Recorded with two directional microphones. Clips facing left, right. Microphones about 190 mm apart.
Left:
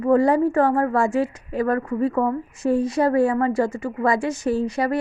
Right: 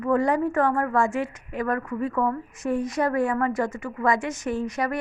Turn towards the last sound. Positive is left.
turn(degrees=30)  # may be behind; listen again after turning